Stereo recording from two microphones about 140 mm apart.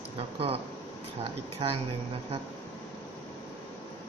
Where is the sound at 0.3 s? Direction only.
45° right (ahead or behind).